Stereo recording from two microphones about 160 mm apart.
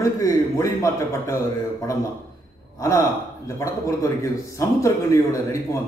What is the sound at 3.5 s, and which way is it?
A man's voice, 20° left (ahead or behind).